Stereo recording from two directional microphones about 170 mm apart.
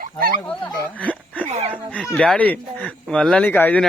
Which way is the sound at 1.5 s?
40° right (ahead or behind).